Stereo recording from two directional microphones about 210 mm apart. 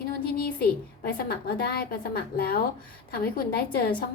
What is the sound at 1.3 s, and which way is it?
A woman's voice, 45° left (ahead or behind).